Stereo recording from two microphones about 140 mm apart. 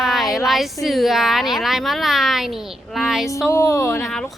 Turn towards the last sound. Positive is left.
turn(degrees=5)  # may be behind; listen again after turning